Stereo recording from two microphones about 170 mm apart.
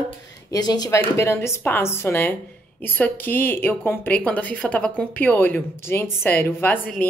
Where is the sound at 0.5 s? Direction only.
25° left (ahead or behind).